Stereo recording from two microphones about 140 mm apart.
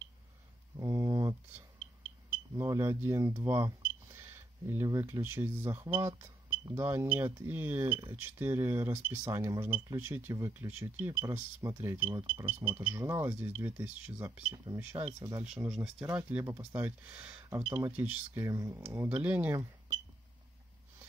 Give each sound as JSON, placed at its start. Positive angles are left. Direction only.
{"t": 0.7, "sound": "a sound", "side_deg": -20}
{"t": 2.5, "sound": "speech", "side_deg": -20}
{"t": 15.4, "sound": "speech", "side_deg": -5}